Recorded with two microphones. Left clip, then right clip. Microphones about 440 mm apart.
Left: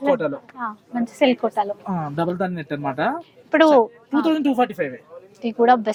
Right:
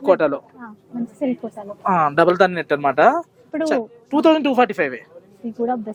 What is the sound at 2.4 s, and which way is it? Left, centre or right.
Speech, right.